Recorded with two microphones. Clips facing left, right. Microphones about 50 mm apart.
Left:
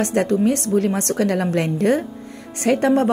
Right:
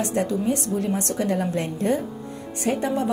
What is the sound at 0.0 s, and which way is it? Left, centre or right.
Speech, left.